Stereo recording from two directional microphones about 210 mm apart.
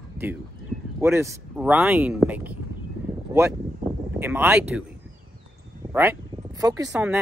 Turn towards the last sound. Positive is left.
turn(degrees=-10)  # may be behind; listen again after turning